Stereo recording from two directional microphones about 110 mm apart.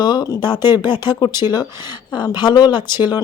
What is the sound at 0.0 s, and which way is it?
A woman's voice, 40° left (ahead or behind).